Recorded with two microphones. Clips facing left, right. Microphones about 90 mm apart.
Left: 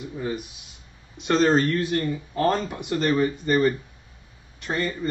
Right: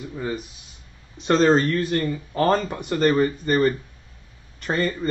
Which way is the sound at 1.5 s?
50° right (ahead or behind).